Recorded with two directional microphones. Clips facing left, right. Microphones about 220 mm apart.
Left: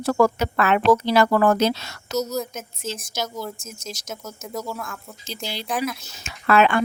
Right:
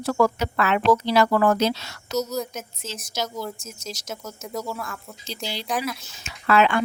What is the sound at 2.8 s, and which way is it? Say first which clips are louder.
Speech: left 5 dB; 50° left (ahead or behind).